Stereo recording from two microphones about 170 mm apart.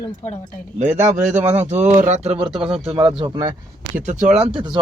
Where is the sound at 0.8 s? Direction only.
45° right (ahead or behind); by 3.5 s 25° right (ahead or behind).